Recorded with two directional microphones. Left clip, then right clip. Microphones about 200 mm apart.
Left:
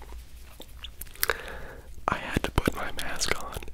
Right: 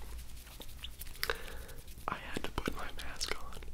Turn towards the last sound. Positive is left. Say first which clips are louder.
# left 10 dB
turn(degrees=45)  # may be behind; listen again after turning